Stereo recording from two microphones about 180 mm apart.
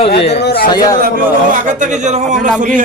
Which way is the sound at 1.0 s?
45° right (ahead or behind).